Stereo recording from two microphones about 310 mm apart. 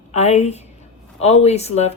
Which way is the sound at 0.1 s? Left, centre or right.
Left.